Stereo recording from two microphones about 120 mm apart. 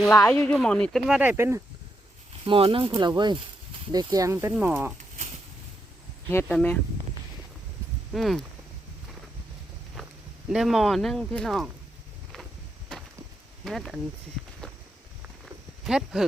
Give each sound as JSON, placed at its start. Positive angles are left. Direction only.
{"t": 0.4, "sound": "speech", "side_deg": 5}
{"t": 1.0, "sound": "speech", "side_deg": -10}
{"t": 2.4, "sound": "speech", "side_deg": -50}
{"t": 4.9, "sound": "a sound", "side_deg": -90}
{"t": 6.3, "sound": "speech", "side_deg": 15}
{"t": 8.1, "sound": "speech", "side_deg": 0}
{"t": 10.5, "sound": "speech", "side_deg": 0}
{"t": 12.9, "sound": "chop", "side_deg": 5}
{"t": 13.7, "sound": "speech", "side_deg": 0}
{"t": 15.9, "sound": "speech", "side_deg": -5}